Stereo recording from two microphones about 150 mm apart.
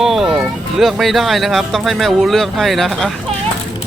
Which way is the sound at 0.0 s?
Centre (ahead or behind).